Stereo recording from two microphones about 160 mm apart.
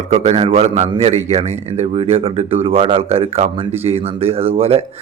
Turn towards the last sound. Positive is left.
turn(degrees=-40)  # may be behind; listen again after turning